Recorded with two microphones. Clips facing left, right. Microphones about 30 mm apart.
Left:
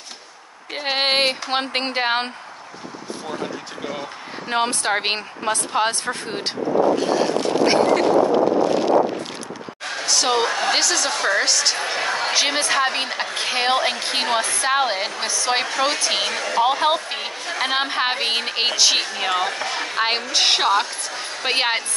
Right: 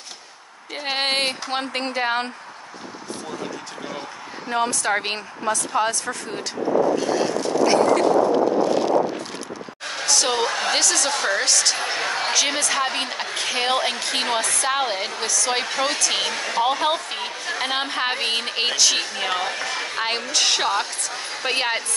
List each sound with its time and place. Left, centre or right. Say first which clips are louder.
0.7 s a woman's voice: left 3 dB; centre
1.5 s speech: left 3 dB; left
4.5 s speech: left 1 dB; left
7.3 s a sound: right 1 dB; left
9.9 s a woman's voice: left 2 dB; centre
12.3 s a woman's voice: left 2 dB; left
14.1 s a woman's voice: left 2 dB; centre
14.4 s a woman's voice: left 1 dB; left
14.7 s a woman's voice: left 5 dB; centre
15.7 s a woman's voice: left 2 dB; centre